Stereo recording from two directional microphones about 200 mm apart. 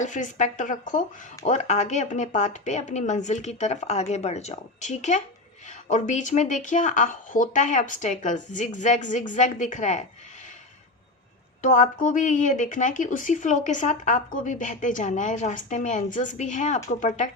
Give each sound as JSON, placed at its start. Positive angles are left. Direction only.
{"t": 0.0, "sound": "speech", "side_deg": 40}
{"t": 11.6, "sound": "speech", "side_deg": 40}